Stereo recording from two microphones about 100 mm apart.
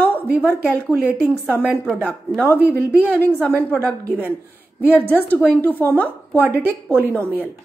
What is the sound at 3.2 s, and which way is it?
A woman's voice, 10° left (ahead or behind).